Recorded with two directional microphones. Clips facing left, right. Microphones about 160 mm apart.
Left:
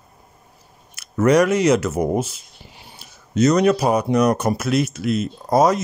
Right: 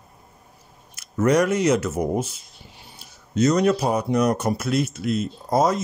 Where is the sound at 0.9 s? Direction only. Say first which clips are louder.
Left 4 dB; 80° left.